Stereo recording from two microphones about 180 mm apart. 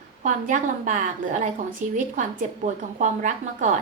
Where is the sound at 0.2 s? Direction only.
45° right (ahead or behind).